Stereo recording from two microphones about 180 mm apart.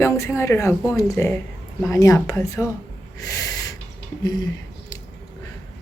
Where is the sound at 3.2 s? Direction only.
20° left (ahead or behind).